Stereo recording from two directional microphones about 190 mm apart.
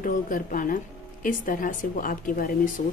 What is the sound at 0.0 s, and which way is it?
Speech, 45° left (ahead or behind).